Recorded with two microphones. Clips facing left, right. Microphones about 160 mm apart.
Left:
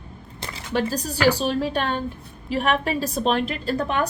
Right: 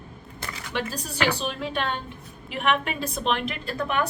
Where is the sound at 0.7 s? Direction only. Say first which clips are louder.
Left 7 dB; 40° left (ahead or behind).